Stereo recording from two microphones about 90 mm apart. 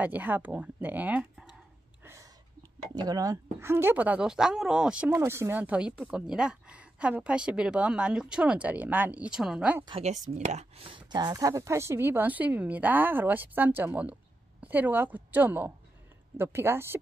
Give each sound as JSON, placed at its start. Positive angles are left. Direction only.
{"t": 0.0, "sound": "a woman's voice", "side_deg": -20}
{"t": 2.9, "sound": "speech", "side_deg": -50}
{"t": 3.5, "sound": "a woman's voice", "side_deg": -25}
{"t": 5.1, "sound": "a woman's voice", "side_deg": -30}
{"t": 5.6, "sound": "a woman's voice", "side_deg": -15}
{"t": 9.9, "sound": "speech", "side_deg": -90}
{"t": 11.1, "sound": "a woman's voice", "side_deg": -50}